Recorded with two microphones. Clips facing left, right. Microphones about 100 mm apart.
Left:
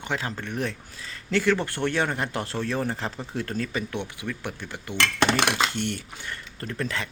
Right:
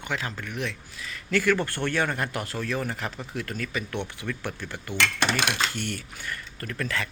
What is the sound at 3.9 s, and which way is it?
Speech, 15° left (ahead or behind).